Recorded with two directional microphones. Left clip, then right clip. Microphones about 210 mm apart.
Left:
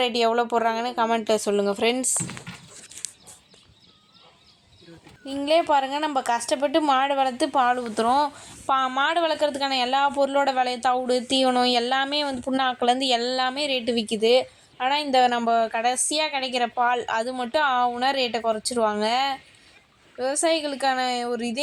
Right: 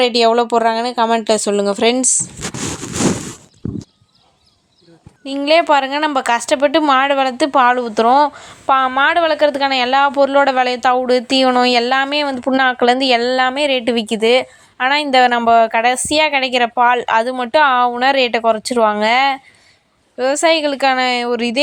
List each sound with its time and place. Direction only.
0.0 s speech: 30° right (ahead or behind)
5.2 s a woman's voice: 35° right (ahead or behind)